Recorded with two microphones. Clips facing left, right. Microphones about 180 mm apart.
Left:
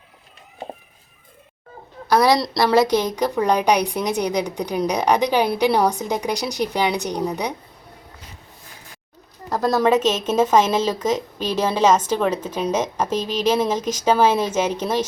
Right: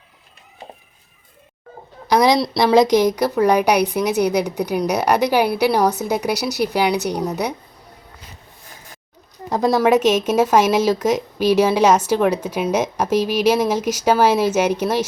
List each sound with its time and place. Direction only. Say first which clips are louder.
2.0 s a woman's voice: right 1 dB; 15° right (ahead or behind)
9.5 s a woman's voice: right 2 dB; 15° right (ahead or behind)